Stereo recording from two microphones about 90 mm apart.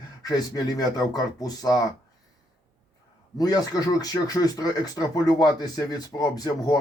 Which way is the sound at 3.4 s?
45° left (ahead or behind).